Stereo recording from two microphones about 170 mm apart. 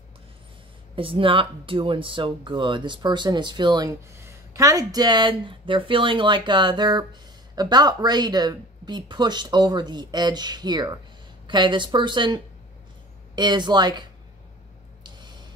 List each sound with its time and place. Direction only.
0.9 s speech: 30° right (ahead or behind)
13.4 s speech: 25° right (ahead or behind)
15.0 s a sound: 25° right (ahead or behind)